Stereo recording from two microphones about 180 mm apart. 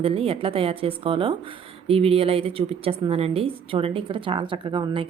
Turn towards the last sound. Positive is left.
turn(degrees=-25)  # may be behind; listen again after turning